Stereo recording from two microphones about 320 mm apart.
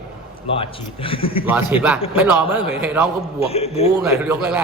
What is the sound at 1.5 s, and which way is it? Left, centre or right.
A man's voice, centre.